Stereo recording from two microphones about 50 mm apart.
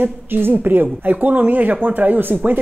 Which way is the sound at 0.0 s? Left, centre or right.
Right.